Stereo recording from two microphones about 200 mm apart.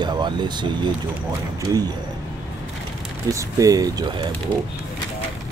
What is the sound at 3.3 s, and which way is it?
Speech, 15° right (ahead or behind).